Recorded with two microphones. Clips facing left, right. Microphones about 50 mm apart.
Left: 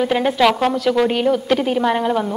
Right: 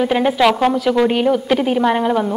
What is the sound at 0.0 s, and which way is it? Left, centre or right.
A woman's voice, centre.